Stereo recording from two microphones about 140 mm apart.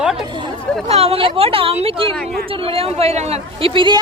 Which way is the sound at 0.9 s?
45° right (ahead or behind).